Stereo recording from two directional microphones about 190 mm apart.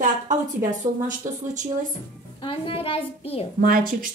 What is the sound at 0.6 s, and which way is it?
Speech, 40° right (ahead or behind).